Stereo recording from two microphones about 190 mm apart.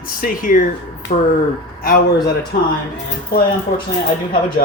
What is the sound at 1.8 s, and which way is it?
Speech, 50° left (ahead or behind).